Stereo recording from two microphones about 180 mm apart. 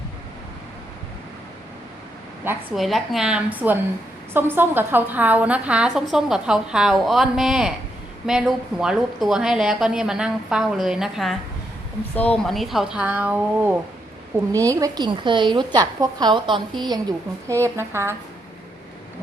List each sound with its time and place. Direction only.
2.7 s a woman's voice: centre (ahead or behind); by 16.8 s 25° right (ahead or behind)
17.5 s a woman's voice: 15° right (ahead or behind)